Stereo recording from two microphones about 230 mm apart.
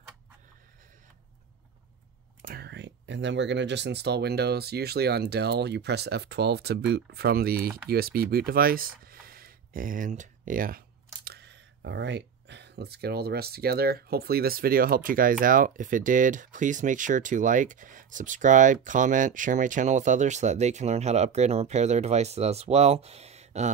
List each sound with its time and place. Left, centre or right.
2.5 s speech: right